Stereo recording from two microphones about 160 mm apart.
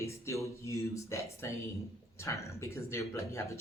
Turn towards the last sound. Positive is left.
turn(degrees=15)  # may be behind; listen again after turning